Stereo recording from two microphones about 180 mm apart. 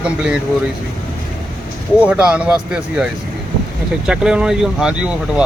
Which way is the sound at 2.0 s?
5° right (ahead or behind).